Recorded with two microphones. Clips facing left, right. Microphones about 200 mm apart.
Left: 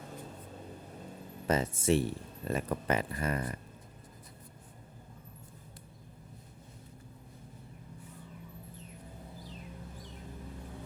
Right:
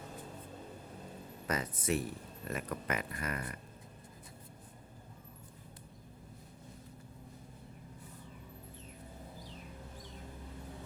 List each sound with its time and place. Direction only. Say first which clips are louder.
1.5 s speech: left 7 dB; 25° left (ahead or behind)